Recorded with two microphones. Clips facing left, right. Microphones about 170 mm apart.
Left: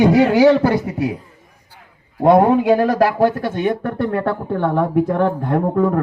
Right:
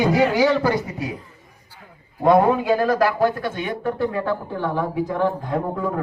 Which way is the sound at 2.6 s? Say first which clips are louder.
Left 4 dB; 70° left (ahead or behind).